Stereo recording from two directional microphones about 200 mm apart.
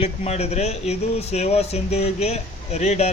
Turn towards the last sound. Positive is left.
turn(degrees=35)  # may be behind; listen again after turning